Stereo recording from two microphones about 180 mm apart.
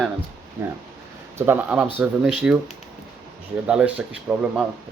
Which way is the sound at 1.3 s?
10° right (ahead or behind).